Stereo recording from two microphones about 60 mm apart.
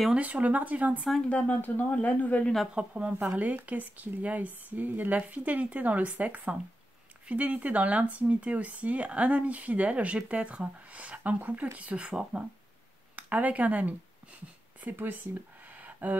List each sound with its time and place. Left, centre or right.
0.1 s speech: right
1.3 s speech: left
2.7 s speech: centre
13.1 s speech: right
15.7 s a sound: right